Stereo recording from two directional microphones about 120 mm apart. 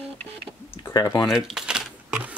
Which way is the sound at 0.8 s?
30° left (ahead or behind).